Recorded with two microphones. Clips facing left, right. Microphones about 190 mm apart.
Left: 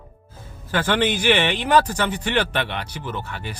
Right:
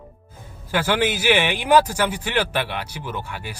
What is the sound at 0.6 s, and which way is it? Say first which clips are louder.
Speech: even; 10° right (ahead or behind).